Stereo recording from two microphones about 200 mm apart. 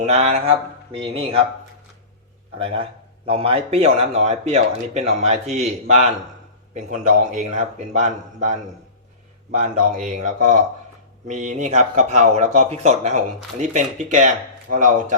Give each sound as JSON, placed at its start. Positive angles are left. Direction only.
{"t": 0.0, "sound": "speech", "side_deg": -35}
{"t": 2.6, "sound": "speech", "side_deg": -25}